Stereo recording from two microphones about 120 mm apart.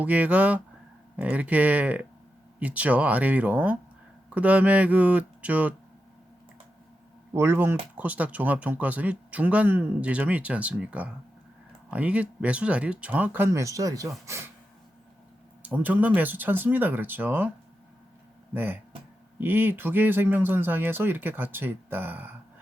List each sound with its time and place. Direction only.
0.0 s speech: 10° right (ahead or behind)
7.3 s speech: 20° right (ahead or behind)
15.6 s speech: 15° right (ahead or behind)
18.5 s speech: 15° right (ahead or behind)